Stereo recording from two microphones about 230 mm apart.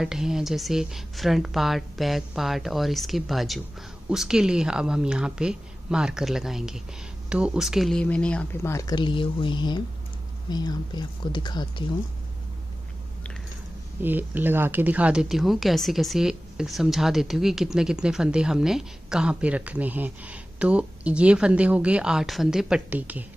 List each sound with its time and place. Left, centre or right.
0.0 s speech: centre
14.0 s speech: centre